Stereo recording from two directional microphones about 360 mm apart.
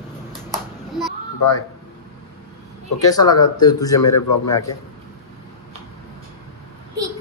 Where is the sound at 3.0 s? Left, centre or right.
Centre.